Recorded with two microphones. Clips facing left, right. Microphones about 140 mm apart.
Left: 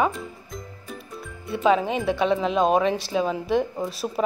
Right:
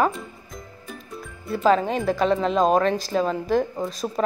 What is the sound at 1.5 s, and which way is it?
A woman's voice, centre (ahead or behind).